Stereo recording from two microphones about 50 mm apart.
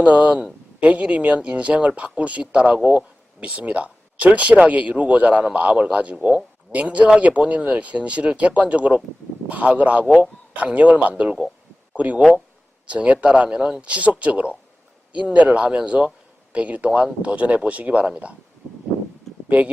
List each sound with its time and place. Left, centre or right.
0.0 s speech: right
13.8 s speech: right
19.5 s speech: right